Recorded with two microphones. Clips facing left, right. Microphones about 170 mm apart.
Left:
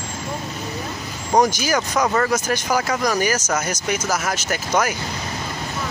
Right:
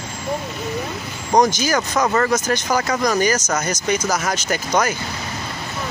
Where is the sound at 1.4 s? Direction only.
10° left (ahead or behind).